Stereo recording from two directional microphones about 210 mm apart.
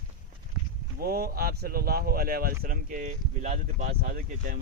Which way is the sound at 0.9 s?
45° right (ahead or behind).